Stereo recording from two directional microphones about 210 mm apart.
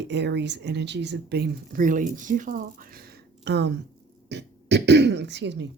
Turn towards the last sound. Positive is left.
turn(degrees=-55)  # may be behind; listen again after turning